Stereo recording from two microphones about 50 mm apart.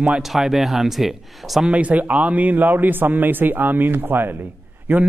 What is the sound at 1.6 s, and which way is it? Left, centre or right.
A man's voice, right.